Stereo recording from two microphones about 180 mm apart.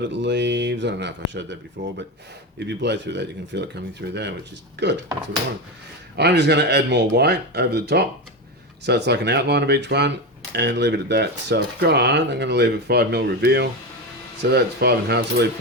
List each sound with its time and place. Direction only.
0.0 s speech: 75° right (ahead or behind)
6.1 s speech: 70° right (ahead or behind)